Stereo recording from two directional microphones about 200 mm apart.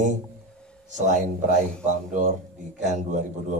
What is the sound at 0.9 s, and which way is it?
A man's voice, 40° right (ahead or behind).